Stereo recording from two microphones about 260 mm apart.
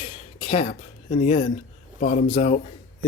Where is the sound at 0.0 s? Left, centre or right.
Left.